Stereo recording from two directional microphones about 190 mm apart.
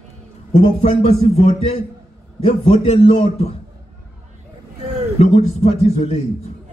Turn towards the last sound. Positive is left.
turn(degrees=35)  # may be behind; listen again after turning